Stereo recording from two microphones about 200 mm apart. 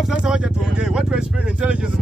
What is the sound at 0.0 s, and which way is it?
Speech, 5° right (ahead or behind).